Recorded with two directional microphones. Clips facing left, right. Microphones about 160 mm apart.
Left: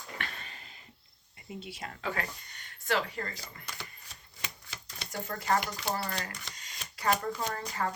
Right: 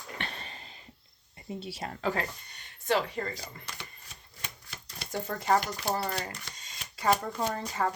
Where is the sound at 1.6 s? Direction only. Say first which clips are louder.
Right 6 dB; 35° right (ahead or behind).